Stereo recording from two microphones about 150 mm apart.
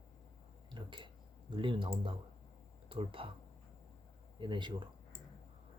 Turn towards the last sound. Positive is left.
turn(degrees=-30)  # may be behind; listen again after turning